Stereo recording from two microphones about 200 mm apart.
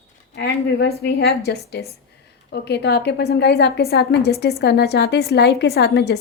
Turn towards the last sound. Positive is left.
turn(degrees=55)  # may be behind; listen again after turning